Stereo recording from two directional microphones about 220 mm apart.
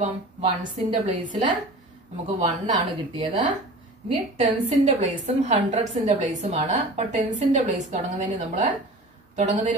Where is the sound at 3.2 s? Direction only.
20° right (ahead or behind).